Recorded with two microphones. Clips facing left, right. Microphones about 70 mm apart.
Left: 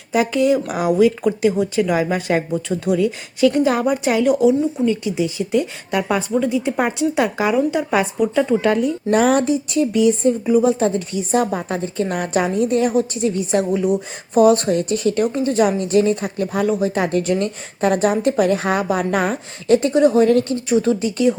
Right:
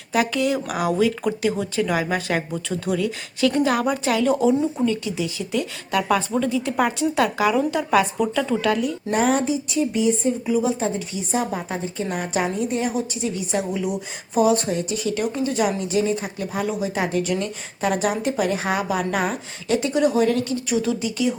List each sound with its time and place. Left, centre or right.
0.1 s speech: left
4.3 s speech: centre
4.9 s speech: left
9.0 s speech: left
10.4 s a woman's voice: left